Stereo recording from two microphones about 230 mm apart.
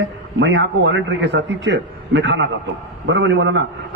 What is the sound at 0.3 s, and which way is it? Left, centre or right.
A man's voice, right.